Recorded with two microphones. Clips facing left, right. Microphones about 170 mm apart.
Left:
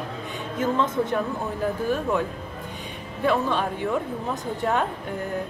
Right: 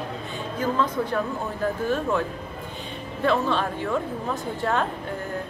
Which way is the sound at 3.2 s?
10° left (ahead or behind).